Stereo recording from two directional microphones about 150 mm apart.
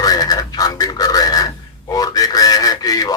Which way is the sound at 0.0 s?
25° left (ahead or behind).